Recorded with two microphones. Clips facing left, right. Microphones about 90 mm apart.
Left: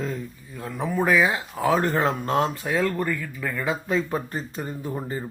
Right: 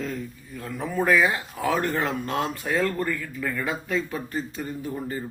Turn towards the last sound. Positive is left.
turn(degrees=25)  # may be behind; listen again after turning